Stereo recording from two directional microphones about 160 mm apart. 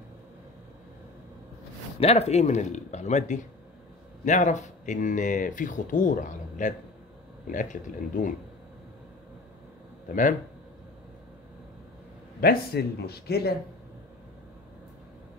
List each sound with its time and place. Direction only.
2.0 s speech: 40° left (ahead or behind)
10.0 s speech: 55° left (ahead or behind)
12.4 s speech: 75° left (ahead or behind)